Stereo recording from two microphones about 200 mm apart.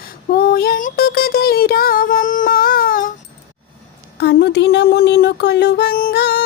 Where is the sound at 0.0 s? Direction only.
50° left (ahead or behind).